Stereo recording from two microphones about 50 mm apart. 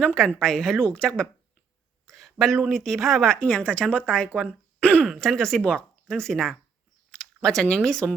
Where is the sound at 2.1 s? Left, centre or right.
Centre.